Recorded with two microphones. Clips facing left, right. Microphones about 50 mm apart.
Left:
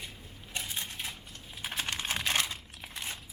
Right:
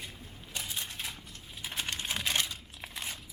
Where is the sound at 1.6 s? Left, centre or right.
Left.